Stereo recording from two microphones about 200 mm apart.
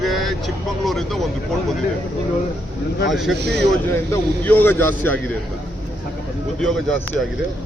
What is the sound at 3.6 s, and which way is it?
A man's voice, 10° left (ahead or behind).